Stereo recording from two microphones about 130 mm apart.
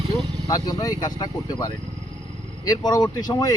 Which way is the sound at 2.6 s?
30° left (ahead or behind).